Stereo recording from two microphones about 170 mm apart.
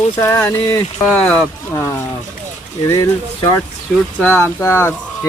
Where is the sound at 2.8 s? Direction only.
40° left (ahead or behind).